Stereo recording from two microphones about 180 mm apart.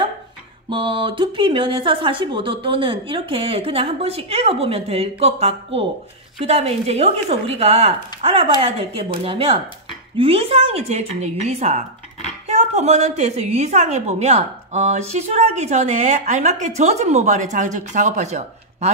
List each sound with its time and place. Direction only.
0.7 s a woman's voice: 25° right (ahead or behind)